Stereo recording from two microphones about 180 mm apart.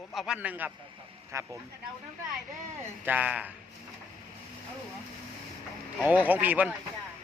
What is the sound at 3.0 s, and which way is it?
Speech, 10° right (ahead or behind).